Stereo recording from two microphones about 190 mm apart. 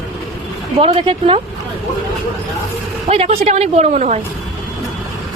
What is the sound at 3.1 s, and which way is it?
Speech, 35° right (ahead or behind).